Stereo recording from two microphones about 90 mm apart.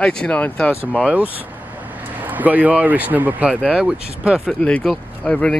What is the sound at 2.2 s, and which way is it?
Speech, 20° right (ahead or behind).